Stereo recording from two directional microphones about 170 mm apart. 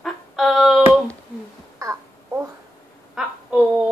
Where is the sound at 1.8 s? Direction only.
20° right (ahead or behind).